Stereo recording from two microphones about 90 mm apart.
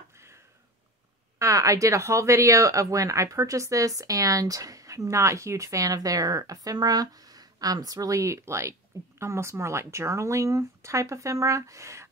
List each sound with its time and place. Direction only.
1.4 s speech: 35° right (ahead or behind)